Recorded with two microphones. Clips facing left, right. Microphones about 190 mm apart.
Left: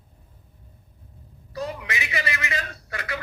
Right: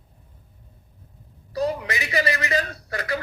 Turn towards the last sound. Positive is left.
turn(degrees=-35)  # may be behind; listen again after turning